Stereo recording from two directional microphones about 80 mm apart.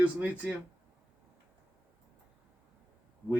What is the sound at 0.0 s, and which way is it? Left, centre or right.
Speech, centre.